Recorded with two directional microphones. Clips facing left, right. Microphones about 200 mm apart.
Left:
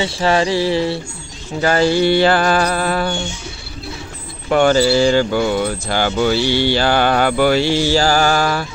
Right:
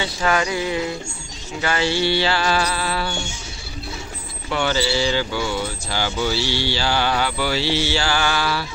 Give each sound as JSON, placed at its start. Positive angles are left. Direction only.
{"t": 0.0, "sound": "a sound", "side_deg": 30}
{"t": 1.6, "sound": "speech", "side_deg": 40}
{"t": 4.5, "sound": "speech", "side_deg": 50}